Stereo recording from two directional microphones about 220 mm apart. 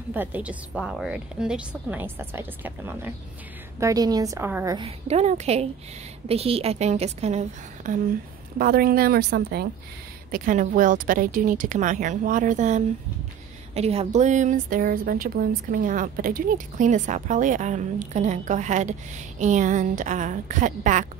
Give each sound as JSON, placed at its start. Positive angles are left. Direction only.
{"t": 0.1, "sound": "a woman's voice", "side_deg": -10}
{"t": 4.7, "sound": "a woman's voice", "side_deg": -30}